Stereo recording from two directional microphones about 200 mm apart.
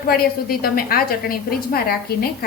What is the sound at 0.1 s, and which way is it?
A woman's voice, 50° left (ahead or behind).